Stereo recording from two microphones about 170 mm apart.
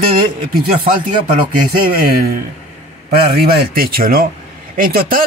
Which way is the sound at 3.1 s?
65° right (ahead or behind).